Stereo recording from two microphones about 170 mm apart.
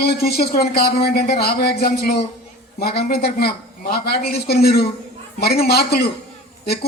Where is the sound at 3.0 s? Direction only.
70° left (ahead or behind).